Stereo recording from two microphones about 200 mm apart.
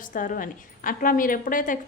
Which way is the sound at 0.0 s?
40° left (ahead or behind).